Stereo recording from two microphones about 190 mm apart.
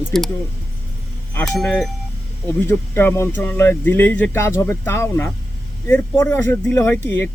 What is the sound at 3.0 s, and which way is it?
Speech, 10° left (ahead or behind).